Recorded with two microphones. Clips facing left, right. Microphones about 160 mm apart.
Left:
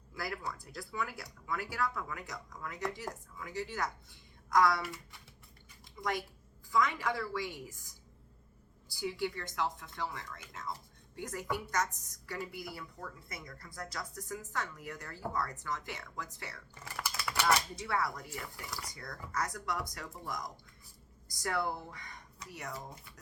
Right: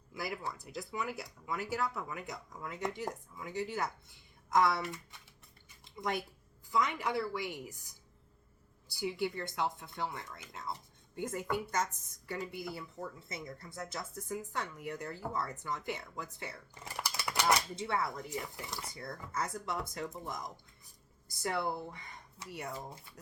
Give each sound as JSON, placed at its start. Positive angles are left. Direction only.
{"t": 0.1, "sound": "a woman's voice", "side_deg": -15}
{"t": 6.0, "sound": "a woman's voice", "side_deg": -25}
{"t": 9.0, "sound": "a woman's voice", "side_deg": -25}